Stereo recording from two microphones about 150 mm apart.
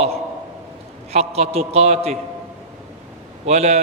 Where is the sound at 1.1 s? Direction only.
45° right (ahead or behind).